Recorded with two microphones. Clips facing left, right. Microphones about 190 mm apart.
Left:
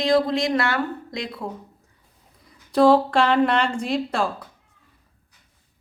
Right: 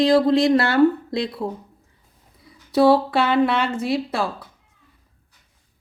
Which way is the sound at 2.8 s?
5° right (ahead or behind).